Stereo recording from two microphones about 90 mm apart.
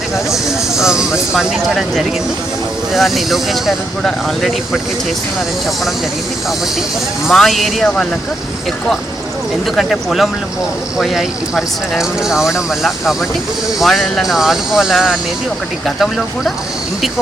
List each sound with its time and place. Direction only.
0.8 s speech: 5° right (ahead or behind)
7.3 s speech: centre (ahead or behind)
9.7 s speech: centre (ahead or behind)